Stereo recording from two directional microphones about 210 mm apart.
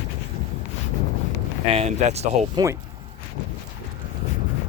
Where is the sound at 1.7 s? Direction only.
30° right (ahead or behind).